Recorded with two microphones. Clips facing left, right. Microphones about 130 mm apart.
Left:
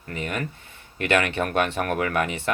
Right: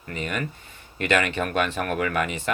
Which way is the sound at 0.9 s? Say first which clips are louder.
Left 1 dB; 60° left (ahead or behind).